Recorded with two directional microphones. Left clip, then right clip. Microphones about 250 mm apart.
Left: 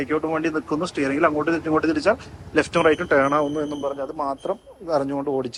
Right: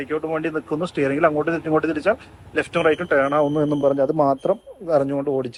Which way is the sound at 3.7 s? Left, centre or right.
Right.